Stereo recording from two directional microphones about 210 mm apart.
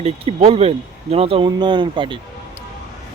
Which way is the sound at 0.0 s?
30° right (ahead or behind).